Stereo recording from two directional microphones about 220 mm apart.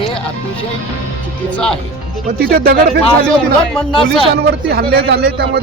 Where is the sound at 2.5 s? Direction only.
45° right (ahead or behind).